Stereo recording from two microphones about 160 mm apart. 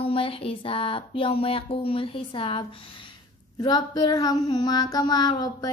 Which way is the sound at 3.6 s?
25° left (ahead or behind).